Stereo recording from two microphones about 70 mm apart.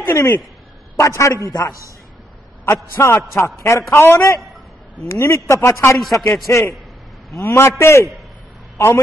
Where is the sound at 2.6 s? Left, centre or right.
Left.